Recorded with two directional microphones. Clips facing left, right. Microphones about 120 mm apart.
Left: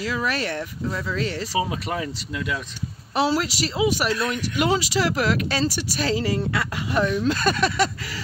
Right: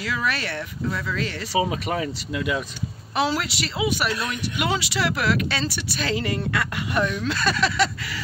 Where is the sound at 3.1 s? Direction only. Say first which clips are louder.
Left 2 dB; 35° left (ahead or behind).